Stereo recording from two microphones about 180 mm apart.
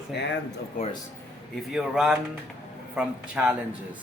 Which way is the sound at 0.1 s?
65° left (ahead or behind).